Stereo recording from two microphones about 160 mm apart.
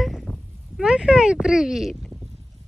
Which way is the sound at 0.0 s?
Centre (ahead or behind).